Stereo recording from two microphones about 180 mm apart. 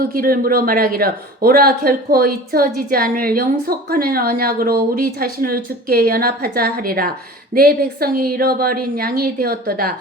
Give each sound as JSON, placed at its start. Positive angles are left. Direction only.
{"t": 0.0, "sound": "speech", "side_deg": -55}